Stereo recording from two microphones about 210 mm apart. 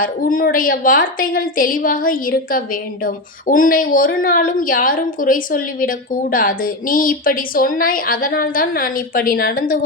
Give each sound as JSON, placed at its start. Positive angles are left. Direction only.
{"t": 0.0, "sound": "a woman's voice", "side_deg": 40}